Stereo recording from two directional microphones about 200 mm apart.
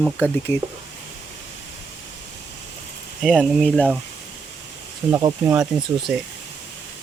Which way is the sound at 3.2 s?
5° right (ahead or behind).